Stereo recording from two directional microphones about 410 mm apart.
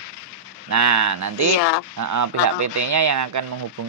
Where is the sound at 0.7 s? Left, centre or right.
Right.